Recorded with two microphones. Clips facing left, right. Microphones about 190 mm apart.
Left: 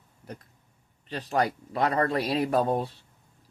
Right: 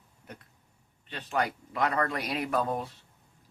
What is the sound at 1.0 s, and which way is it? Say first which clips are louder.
Speech: left 4 dB; 35° left (ahead or behind).